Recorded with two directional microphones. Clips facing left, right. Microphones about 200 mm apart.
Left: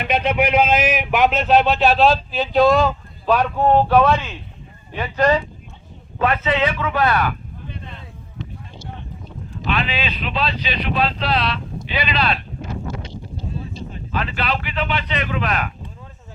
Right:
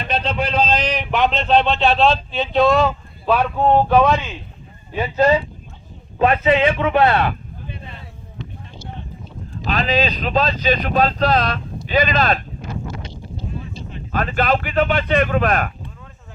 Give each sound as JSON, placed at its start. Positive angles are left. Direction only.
{"t": 0.0, "sound": "a man's voice", "side_deg": 10}
{"t": 5.0, "sound": "speech", "side_deg": -25}
{"t": 7.7, "sound": "a sound", "side_deg": -5}
{"t": 9.6, "sound": "speech", "side_deg": -40}
{"t": 14.1, "sound": "speech", "side_deg": -50}